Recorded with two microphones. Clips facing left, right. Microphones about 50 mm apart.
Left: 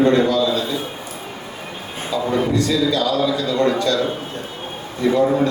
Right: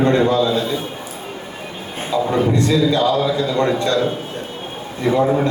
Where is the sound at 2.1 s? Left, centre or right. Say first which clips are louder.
Right 2 dB; right.